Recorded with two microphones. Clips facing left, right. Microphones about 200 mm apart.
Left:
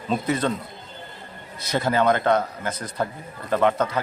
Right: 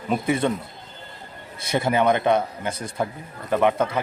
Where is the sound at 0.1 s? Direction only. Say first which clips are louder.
Right 1 dB; 15° right (ahead or behind).